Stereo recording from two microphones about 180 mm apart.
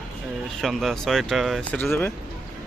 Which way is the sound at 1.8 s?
10° left (ahead or behind).